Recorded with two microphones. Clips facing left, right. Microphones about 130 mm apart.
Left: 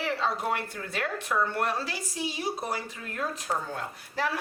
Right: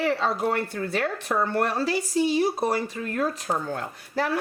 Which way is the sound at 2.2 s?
60° right (ahead or behind).